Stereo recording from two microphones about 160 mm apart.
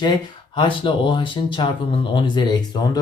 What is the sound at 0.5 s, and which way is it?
Speech, 30° left (ahead or behind).